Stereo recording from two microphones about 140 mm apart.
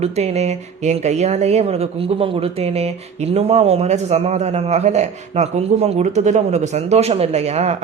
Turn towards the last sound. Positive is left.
turn(degrees=-50)  # may be behind; listen again after turning